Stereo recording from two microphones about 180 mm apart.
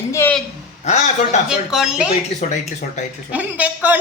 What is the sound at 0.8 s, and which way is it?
Speech, 40° left (ahead or behind).